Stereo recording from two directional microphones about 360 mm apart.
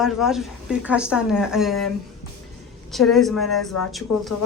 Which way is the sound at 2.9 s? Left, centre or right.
Centre.